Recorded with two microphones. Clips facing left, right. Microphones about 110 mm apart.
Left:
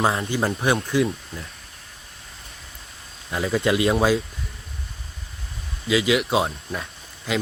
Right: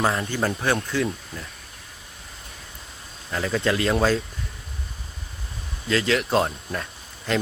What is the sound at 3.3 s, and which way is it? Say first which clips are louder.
Speech: left 2 dB; 10° left (ahead or behind).